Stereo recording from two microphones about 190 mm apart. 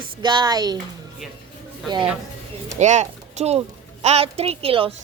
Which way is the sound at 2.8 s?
40° right (ahead or behind).